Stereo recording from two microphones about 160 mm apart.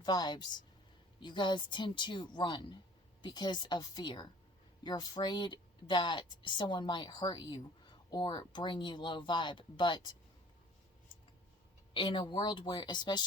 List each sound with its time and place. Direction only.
0.0 s speech: 25° left (ahead or behind)
11.9 s speech: 30° left (ahead or behind)